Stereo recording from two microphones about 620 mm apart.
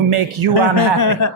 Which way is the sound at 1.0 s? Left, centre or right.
Left.